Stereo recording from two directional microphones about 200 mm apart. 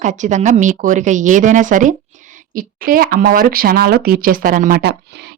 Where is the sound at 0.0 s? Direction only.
35° right (ahead or behind).